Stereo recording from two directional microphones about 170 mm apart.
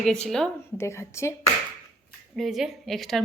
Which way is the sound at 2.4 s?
Centre (ahead or behind).